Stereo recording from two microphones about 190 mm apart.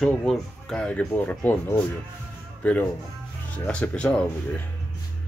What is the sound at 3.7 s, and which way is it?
Speech, 5° left (ahead or behind).